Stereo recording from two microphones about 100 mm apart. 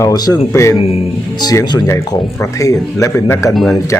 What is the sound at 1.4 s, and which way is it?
Speech, 45° left (ahead or behind).